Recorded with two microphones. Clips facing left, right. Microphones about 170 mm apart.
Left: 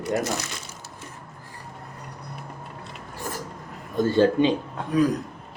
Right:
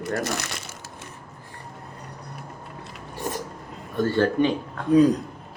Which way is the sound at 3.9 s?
15° left (ahead or behind).